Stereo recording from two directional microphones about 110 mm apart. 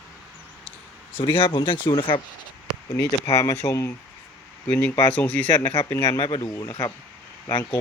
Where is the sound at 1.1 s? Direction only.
45° left (ahead or behind).